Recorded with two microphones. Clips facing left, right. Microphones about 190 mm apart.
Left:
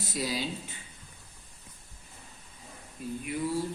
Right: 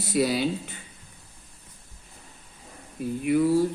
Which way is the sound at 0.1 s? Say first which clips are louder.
Right 10 dB; 65° right (ahead or behind).